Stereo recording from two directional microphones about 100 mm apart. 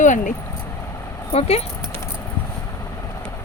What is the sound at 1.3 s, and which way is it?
Speech, 90° left.